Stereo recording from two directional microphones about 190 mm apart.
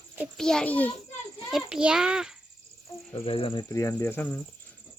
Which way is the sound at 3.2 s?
30° left (ahead or behind).